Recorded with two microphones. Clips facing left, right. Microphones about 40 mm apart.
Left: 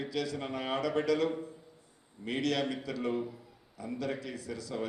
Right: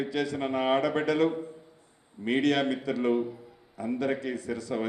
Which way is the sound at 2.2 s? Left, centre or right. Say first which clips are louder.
Right 6 dB; right.